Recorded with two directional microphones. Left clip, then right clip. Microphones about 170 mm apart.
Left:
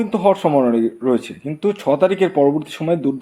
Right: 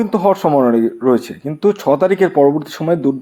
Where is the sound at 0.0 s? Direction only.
35° right (ahead or behind).